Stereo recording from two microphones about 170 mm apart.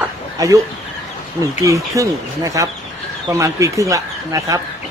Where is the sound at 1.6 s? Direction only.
20° right (ahead or behind).